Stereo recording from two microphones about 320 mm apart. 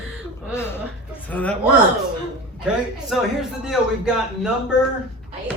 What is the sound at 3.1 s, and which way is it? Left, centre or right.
A man's voice, centre.